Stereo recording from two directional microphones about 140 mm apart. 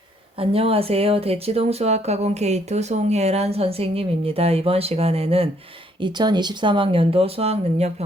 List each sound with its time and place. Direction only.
0.3 s speech: 45° right (ahead or behind)
6.0 s speech: 30° right (ahead or behind); by 7.9 s 50° right (ahead or behind)